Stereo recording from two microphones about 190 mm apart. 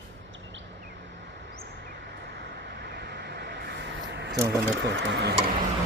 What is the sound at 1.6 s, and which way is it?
Vehicle, 55° right (ahead or behind).